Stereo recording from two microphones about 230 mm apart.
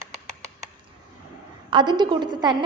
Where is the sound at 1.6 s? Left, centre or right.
Centre.